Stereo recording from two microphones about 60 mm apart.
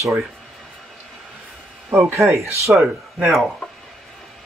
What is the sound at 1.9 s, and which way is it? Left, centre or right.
Speech, right.